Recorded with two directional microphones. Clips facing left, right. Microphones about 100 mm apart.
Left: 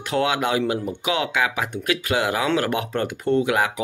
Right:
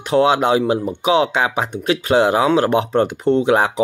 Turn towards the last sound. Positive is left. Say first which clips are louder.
# right 5 dB
turn(degrees=-30)  # may be behind; listen again after turning